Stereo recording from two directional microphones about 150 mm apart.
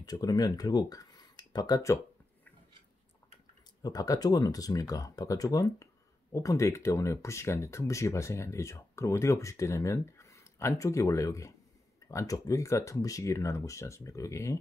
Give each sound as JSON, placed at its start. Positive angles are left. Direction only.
{"t": 0.0, "sound": "speech", "side_deg": 25}
{"t": 3.8, "sound": "speech", "side_deg": 25}